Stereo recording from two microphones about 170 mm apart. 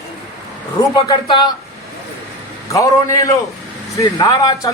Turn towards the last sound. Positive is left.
turn(degrees=20)  # may be behind; listen again after turning